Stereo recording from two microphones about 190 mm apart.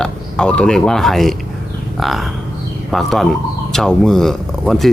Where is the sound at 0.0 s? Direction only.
5° left (ahead or behind).